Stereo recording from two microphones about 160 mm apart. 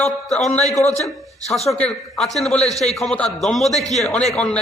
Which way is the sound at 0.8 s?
45° left (ahead or behind).